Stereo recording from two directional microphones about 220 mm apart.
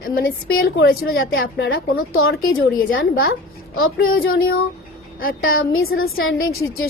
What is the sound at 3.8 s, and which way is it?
Speech, 65° left (ahead or behind).